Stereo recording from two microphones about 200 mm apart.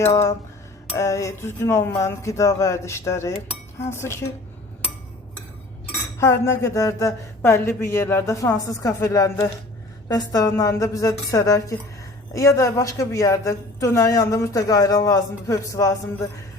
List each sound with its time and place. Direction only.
0.0 s a woman's voice: 15° left (ahead or behind)
6.1 s a woman's voice: 15° left (ahead or behind)